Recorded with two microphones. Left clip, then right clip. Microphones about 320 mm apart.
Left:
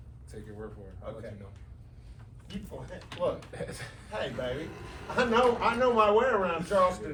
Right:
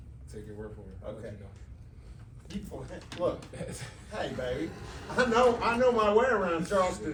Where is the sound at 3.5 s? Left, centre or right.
Centre.